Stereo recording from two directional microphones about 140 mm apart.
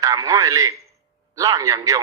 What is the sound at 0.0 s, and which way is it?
A man's voice, 25° right (ahead or behind).